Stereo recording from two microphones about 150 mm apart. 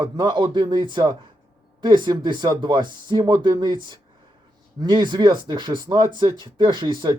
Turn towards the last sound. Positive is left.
turn(degrees=-30)  # may be behind; listen again after turning